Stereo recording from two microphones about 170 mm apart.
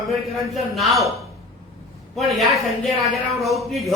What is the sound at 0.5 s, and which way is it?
Speech, centre (ahead or behind).